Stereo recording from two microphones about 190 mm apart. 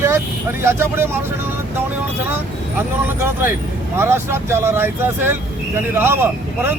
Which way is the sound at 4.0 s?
15° right (ahead or behind).